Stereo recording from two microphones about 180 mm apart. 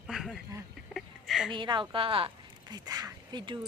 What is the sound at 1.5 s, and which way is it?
A woman's voice, 25° right (ahead or behind).